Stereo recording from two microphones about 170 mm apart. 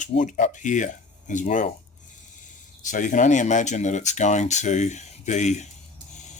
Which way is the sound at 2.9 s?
50° left (ahead or behind).